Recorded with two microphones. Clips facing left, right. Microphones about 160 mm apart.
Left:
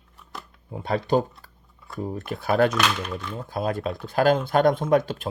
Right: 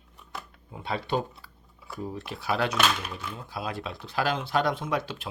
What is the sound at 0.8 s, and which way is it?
Speech, 45° left (ahead or behind).